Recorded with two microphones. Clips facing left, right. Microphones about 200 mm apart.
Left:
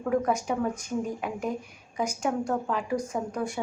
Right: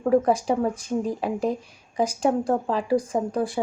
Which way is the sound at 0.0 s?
30° right (ahead or behind).